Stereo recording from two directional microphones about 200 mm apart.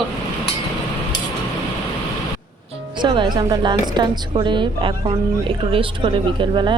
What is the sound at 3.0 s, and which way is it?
Speech, 25° right (ahead or behind).